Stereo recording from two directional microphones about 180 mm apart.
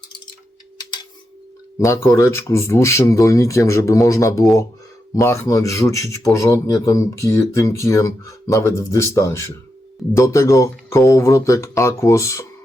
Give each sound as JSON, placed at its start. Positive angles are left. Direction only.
{"t": 1.8, "sound": "speech", "side_deg": 15}